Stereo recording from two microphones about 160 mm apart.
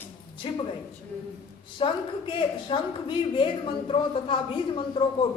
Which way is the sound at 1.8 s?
30° left (ahead or behind).